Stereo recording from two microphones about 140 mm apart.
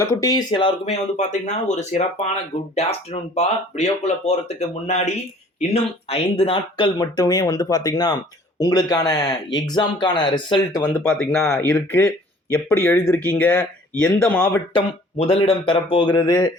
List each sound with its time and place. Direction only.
0.0 s speech: 20° left (ahead or behind)
0.5 s speech: 40° left (ahead or behind)
1.1 s speech: 60° left (ahead or behind); by 10.6 s 35° left (ahead or behind)
10.8 s speech: 15° left (ahead or behind)
11.7 s speech: 15° left (ahead or behind)
15.2 s speech: 40° left (ahead or behind)
16.0 s speech: 25° left (ahead or behind)